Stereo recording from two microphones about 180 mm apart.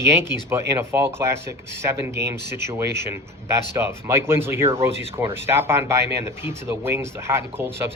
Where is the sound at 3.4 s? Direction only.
15° right (ahead or behind).